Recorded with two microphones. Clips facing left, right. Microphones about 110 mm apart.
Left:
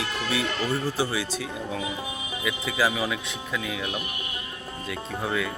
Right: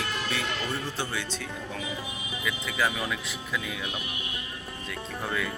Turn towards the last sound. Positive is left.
turn(degrees=5)  # may be behind; listen again after turning